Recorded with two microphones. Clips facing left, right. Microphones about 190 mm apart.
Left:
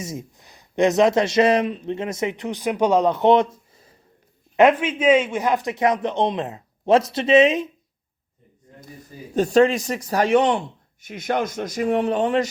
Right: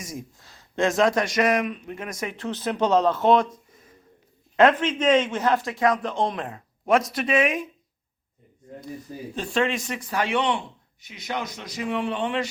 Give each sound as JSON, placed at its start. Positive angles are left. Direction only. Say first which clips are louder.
{"t": 0.0, "sound": "speech", "louder": "left 4 dB", "side_deg": 25}
{"t": 4.5, "sound": "speech", "louder": "left 2 dB", "side_deg": 15}
{"t": 9.3, "sound": "a man's voice", "louder": "left 9 dB", "side_deg": 45}